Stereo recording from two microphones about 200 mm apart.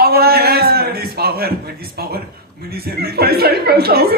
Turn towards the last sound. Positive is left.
turn(degrees=-50)  # may be behind; listen again after turning